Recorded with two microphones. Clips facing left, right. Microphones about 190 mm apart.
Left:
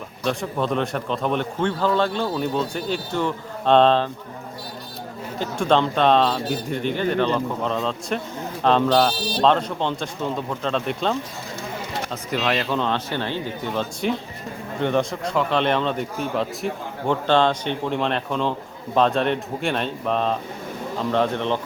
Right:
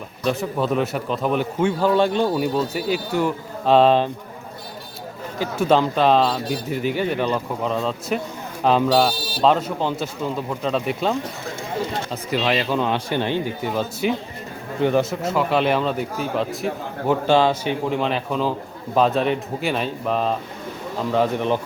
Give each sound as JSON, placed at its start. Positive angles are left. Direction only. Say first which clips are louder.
{"t": 0.3, "sound": "a man's voice", "louder": "right 2 dB", "side_deg": -5}
{"t": 5.4, "sound": "speech", "louder": "right 2 dB", "side_deg": -5}
{"t": 12.4, "sound": "a man's voice", "louder": "right 2 dB", "side_deg": -5}